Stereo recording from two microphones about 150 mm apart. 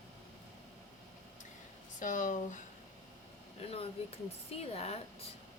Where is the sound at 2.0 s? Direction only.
60° left (ahead or behind).